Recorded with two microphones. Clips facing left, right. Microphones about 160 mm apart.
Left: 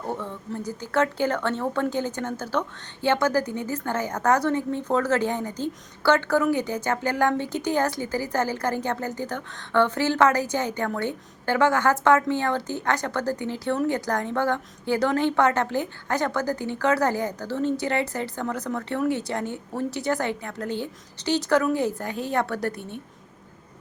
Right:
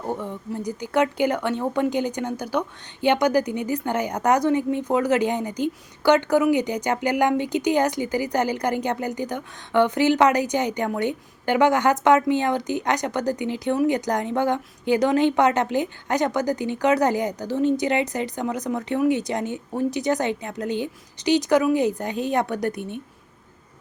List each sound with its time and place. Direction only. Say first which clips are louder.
0.0 s speech: right 2 dB; 15° right (ahead or behind)